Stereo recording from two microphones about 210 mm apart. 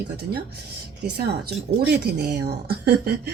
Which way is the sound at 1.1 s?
50° right (ahead or behind).